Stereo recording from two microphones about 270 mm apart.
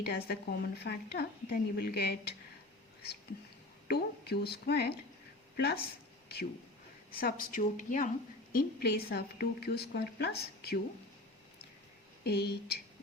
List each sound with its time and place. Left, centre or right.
0.0 s a woman's voice: left
3.8 s a woman's voice: left
7.2 s a woman's voice: left
12.2 s a woman's voice: left